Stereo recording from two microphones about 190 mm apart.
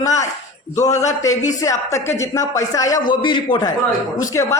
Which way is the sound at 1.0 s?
15° left (ahead or behind).